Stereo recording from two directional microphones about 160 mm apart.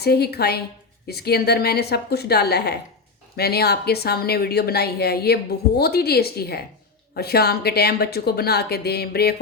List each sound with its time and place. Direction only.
0.0 s a woman's voice: 80° left